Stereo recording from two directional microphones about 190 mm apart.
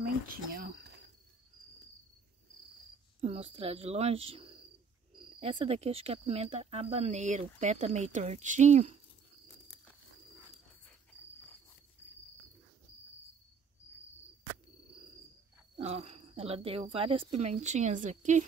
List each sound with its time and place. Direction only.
0.0 s speech: 50° right (ahead or behind)
3.2 s speech: 35° right (ahead or behind)
15.7 s speech: 30° right (ahead or behind)